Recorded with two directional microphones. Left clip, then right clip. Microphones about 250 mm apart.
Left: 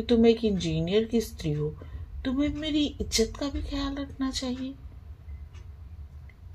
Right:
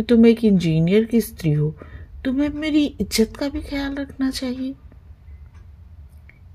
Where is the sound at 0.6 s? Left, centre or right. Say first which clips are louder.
Right 7 dB; right.